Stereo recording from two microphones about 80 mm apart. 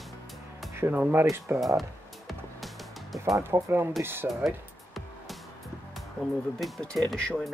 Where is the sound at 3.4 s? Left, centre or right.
Right.